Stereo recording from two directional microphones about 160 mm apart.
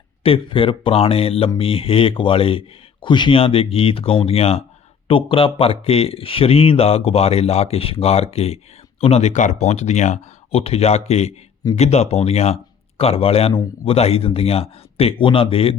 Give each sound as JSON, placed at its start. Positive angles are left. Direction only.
{"t": 0.2, "sound": "speech", "side_deg": 35}